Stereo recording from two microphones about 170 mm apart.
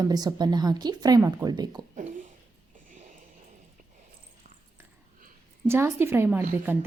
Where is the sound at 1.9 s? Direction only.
45° right (ahead or behind).